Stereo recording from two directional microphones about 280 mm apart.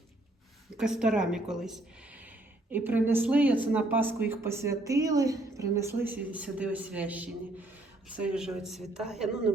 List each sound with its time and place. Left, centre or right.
0.8 s a woman's voice: centre